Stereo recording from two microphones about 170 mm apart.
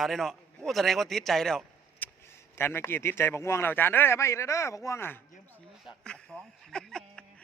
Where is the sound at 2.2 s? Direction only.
15° left (ahead or behind).